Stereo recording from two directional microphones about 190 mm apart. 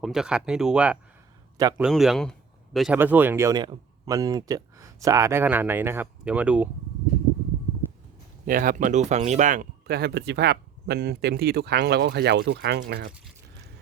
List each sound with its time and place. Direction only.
0.0 s speech: centre (ahead or behind)
8.4 s speech: 45° right (ahead or behind)